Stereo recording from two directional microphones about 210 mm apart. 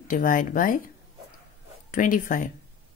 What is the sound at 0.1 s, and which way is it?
Speech, 40° left (ahead or behind).